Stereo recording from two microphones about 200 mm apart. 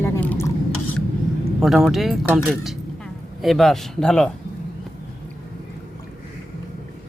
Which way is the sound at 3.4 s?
Centre (ahead or behind).